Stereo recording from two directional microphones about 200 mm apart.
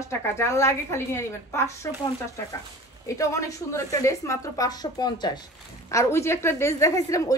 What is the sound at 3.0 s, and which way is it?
A woman's voice, 15° left (ahead or behind).